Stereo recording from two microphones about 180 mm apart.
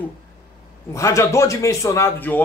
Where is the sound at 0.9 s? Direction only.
15° left (ahead or behind).